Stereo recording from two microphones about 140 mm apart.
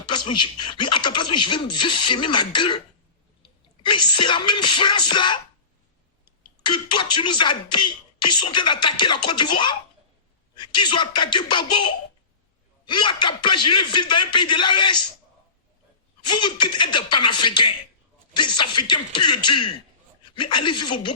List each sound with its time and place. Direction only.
0.0 s speech: 35° left (ahead or behind)
6.6 s speech: 35° left (ahead or behind)
16.2 s speech: 35° left (ahead or behind)